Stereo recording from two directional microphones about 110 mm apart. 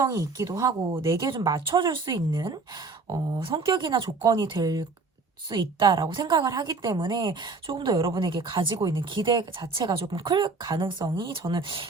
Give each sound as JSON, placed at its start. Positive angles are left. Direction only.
{"t": 0.0, "sound": "speech", "side_deg": -30}
{"t": 1.5, "sound": "a woman's voice", "side_deg": -50}
{"t": 5.5, "sound": "a woman's voice", "side_deg": -50}
{"t": 6.1, "sound": "a woman's voice", "side_deg": -40}